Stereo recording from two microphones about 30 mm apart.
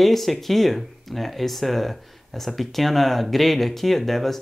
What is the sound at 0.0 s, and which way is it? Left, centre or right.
Speech, centre.